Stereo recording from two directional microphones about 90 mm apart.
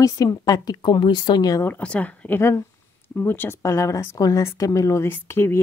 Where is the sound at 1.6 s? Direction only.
20° left (ahead or behind).